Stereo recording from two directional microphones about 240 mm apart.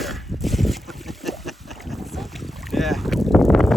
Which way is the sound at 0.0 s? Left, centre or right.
Centre.